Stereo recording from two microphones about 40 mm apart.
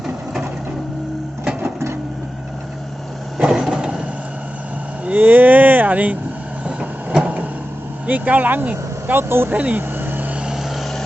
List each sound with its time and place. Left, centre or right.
3.3 s vehicle: centre
5.1 s speech: right
6.7 s vehicle: right
8.0 s speech: right
8.6 s vehicle: right
9.1 s speech: right
9.5 s speech: right
10.0 s vehicle: right
10.5 s vehicle: centre